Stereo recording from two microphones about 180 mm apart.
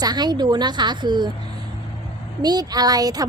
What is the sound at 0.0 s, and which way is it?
A woman's voice, 20° right (ahead or behind).